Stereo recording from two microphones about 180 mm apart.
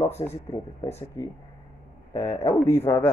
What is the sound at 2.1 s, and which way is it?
Speech, 15° left (ahead or behind).